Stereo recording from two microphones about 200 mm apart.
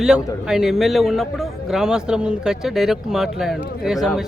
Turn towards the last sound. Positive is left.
turn(degrees=0)  # may be behind; listen again after turning